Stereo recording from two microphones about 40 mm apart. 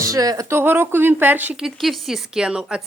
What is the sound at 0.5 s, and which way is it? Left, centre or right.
Speech, right.